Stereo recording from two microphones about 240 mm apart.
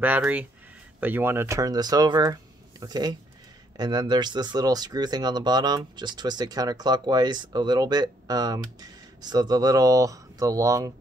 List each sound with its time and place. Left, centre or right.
0.0 s speech: centre